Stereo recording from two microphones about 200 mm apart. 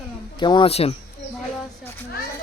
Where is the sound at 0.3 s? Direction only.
25° left (ahead or behind).